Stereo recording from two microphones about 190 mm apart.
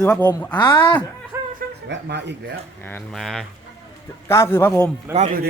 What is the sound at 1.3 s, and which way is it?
Chuckle, 15° right (ahead or behind).